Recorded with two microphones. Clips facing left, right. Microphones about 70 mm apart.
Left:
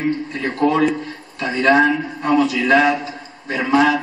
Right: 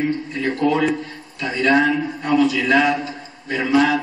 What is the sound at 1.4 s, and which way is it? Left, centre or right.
A man's voice, left.